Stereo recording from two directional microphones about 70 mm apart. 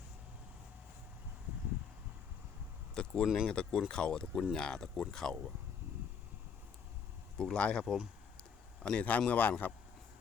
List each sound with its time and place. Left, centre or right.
2.9 s a sound: centre
3.4 s speech: centre
7.3 s a man's voice: centre